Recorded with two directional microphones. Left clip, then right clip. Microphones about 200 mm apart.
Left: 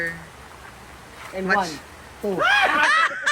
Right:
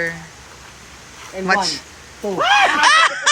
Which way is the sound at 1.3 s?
5° right (ahead or behind).